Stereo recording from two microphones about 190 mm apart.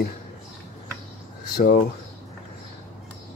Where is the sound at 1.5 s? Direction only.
50° left (ahead or behind).